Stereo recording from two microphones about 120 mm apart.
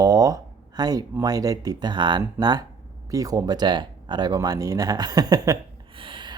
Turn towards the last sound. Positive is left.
turn(degrees=-40)  # may be behind; listen again after turning